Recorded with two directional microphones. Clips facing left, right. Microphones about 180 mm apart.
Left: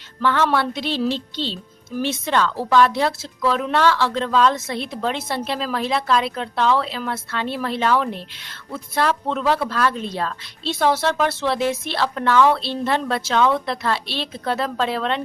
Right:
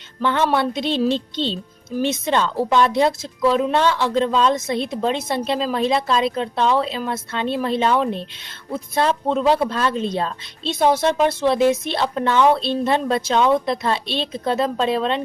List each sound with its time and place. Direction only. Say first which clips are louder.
0.2 s a woman's voice: right 1 dB; 20° right (ahead or behind)